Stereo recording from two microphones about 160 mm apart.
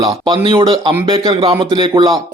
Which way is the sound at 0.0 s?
30° right (ahead or behind).